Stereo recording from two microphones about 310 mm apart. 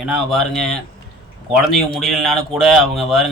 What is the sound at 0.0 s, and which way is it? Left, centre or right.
Speech, centre.